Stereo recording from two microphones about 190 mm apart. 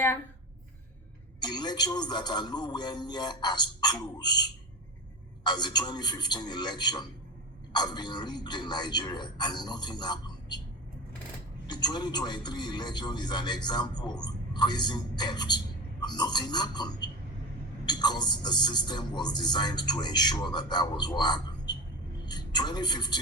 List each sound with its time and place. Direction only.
1.4 s a man's voice: 20° left (ahead or behind)
11.7 s a man's voice: 20° left (ahead or behind)